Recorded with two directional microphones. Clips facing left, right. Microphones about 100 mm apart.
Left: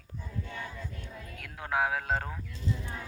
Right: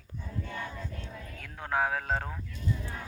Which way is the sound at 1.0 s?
Centre (ahead or behind).